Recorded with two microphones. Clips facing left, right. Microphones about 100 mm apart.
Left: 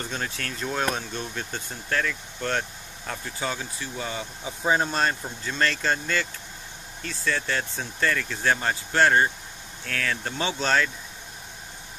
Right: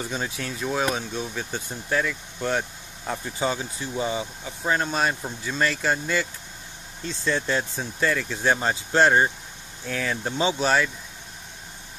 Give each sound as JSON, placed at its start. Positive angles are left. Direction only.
{"t": 0.0, "sound": "speech", "side_deg": -10}
{"t": 3.3, "sound": "speech", "side_deg": -20}
{"t": 4.5, "sound": "speech", "side_deg": 10}
{"t": 4.8, "sound": "speech", "side_deg": -5}